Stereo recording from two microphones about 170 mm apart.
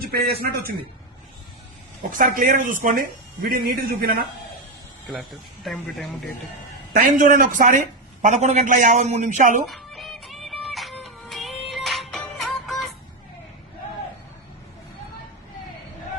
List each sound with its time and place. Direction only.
0.0 s a man's voice: 65° right (ahead or behind)
2.1 s speech: 55° right (ahead or behind)
5.0 s a man's voice: centre (ahead or behind)
6.9 s a man's voice: 55° right (ahead or behind)
9.6 s music: centre (ahead or behind)